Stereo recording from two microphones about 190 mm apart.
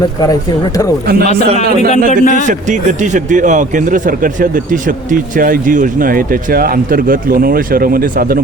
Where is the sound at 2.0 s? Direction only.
45° left (ahead or behind).